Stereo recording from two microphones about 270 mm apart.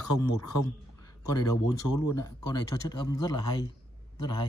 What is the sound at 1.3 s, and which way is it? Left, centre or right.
Speech, centre.